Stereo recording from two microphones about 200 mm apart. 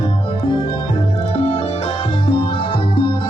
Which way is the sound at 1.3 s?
30° left (ahead or behind).